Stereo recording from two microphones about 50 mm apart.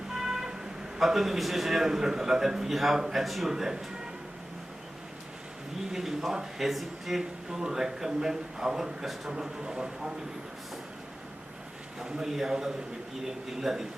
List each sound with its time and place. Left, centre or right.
0.1 s vehicle: centre
0.9 s a man's voice: centre
5.9 s speech: centre
11.9 s speech: centre